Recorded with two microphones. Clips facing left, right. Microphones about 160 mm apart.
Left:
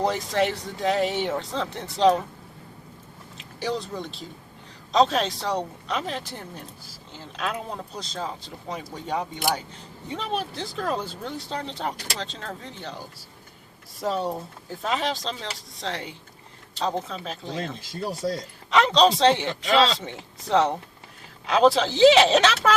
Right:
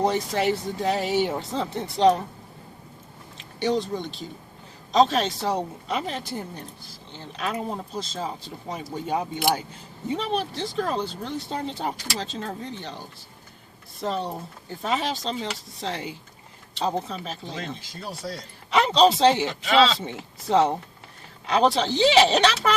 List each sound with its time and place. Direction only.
0.0 s speech: centre (ahead or behind)
3.6 s speech: centre (ahead or behind)
14.0 s speech: 5° left (ahead or behind)
17.6 s speech: 45° left (ahead or behind)
18.7 s speech: 5° right (ahead or behind)